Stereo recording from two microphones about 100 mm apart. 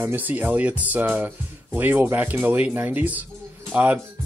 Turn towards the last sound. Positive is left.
turn(degrees=-20)  # may be behind; listen again after turning